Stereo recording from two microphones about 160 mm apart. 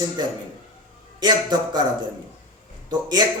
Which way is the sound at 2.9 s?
25° right (ahead or behind).